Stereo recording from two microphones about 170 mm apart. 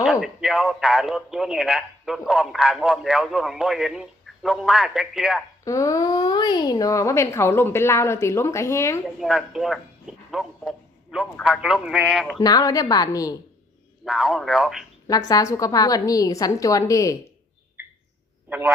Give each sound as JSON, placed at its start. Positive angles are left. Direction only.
{"t": 0.0, "sound": "a man's voice", "side_deg": -5}
{"t": 5.6, "sound": "speech", "side_deg": 20}
{"t": 9.0, "sound": "a sound", "side_deg": 0}
{"t": 11.4, "sound": "a man's voice", "side_deg": -5}
{"t": 12.4, "sound": "a woman's voice", "side_deg": 20}
{"t": 14.0, "sound": "a man's voice", "side_deg": -5}
{"t": 15.3, "sound": "a woman's voice", "side_deg": 20}
{"t": 18.4, "sound": "a man's voice", "side_deg": -10}